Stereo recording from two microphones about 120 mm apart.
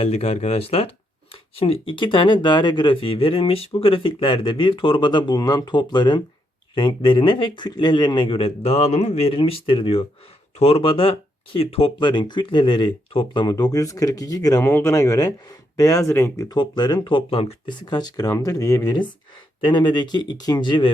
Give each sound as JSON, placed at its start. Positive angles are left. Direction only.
{"t": 0.0, "sound": "speech", "side_deg": 60}
{"t": 14.6, "sound": "speech", "side_deg": 20}
{"t": 16.5, "sound": "speech", "side_deg": 35}